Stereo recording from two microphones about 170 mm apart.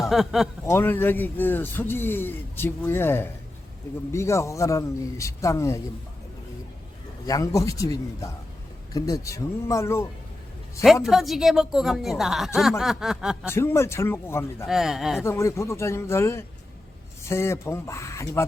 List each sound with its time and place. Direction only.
0.1 s a woman's voice: centre (ahead or behind)
0.6 s a man's voice: 15° left (ahead or behind)
7.3 s a man's voice: 20° left (ahead or behind)
11.0 s a woman's voice: centre (ahead or behind)
13.5 s a man's voice: 15° left (ahead or behind)
14.7 s a woman's voice: centre (ahead or behind)
15.2 s a man's voice: 15° left (ahead or behind)